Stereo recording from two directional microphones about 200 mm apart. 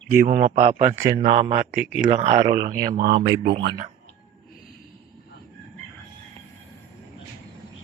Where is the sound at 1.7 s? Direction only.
5° right (ahead or behind).